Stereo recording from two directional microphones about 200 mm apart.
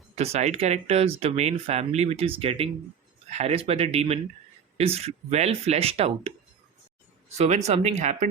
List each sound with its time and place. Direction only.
0.2 s speech: 35° right (ahead or behind)
7.3 s speech: 35° right (ahead or behind)